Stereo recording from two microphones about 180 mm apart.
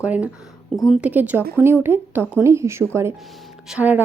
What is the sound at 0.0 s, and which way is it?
A woman's voice, 5° right (ahead or behind).